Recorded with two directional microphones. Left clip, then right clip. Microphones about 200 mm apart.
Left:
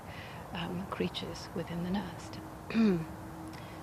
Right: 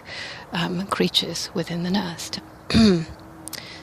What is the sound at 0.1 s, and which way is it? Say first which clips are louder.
Speech: right 14 dB; 50° right (ahead or behind).